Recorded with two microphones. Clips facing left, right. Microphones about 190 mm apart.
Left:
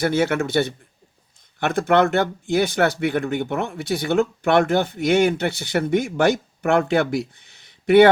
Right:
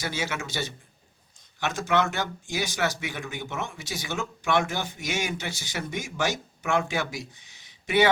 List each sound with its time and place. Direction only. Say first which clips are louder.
0.0 s speech: left 12 dB; 55° left (ahead or behind)